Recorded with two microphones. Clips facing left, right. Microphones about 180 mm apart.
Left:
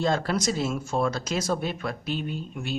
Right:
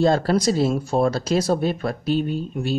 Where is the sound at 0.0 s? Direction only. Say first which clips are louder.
Right 7 dB; 35° right (ahead or behind).